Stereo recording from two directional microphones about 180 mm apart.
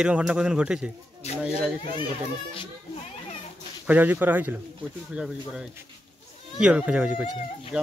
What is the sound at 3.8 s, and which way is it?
A man's voice, 10° right (ahead or behind).